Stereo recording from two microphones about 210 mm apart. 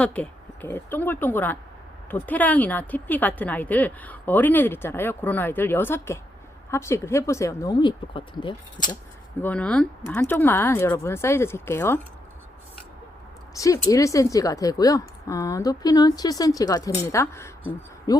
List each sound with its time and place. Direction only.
0.0 s a woman's voice: 5° left (ahead or behind); by 8.5 s 25° left (ahead or behind)
9.4 s a woman's voice: 5° left (ahead or behind)
13.6 s a woman's voice: 15° left (ahead or behind)